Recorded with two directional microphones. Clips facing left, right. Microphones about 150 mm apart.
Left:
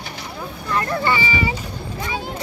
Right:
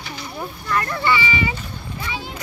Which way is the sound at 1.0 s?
40° left (ahead or behind).